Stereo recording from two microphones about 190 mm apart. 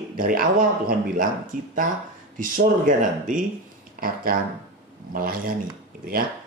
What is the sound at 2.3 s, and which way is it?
Speech, 45° right (ahead or behind).